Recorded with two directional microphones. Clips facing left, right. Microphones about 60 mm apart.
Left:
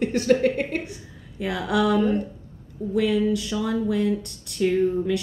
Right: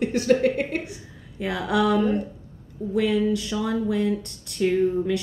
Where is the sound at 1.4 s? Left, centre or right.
Right.